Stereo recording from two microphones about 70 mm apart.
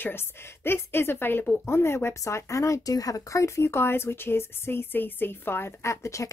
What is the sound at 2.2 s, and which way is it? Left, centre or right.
Speech, left.